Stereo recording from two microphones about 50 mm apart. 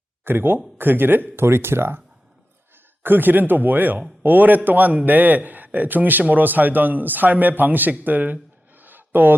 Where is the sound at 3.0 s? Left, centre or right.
Right.